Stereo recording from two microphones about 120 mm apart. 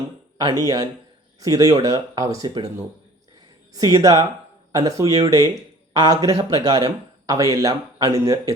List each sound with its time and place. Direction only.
0.3 s speech: 35° right (ahead or behind)
3.8 s speech: 30° right (ahead or behind)